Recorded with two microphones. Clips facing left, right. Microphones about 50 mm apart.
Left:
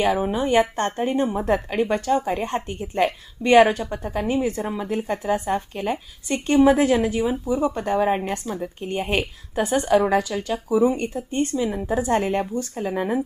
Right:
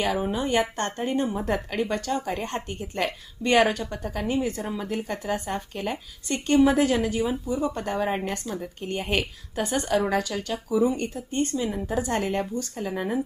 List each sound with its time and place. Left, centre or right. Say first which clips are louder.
0.0 s a woman's voice: left 4 dB; centre
13.0 s speech: left 4 dB; centre